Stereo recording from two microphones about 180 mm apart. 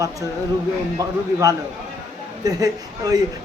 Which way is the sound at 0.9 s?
20° right (ahead or behind).